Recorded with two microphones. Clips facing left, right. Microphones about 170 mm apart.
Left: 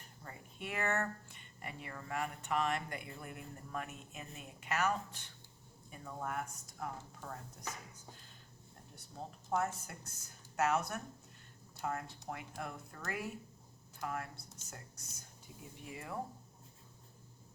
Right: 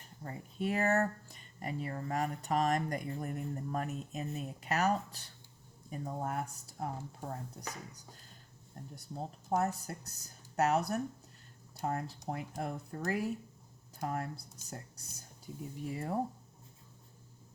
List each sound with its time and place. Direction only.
0.2 s speech: 35° right (ahead or behind)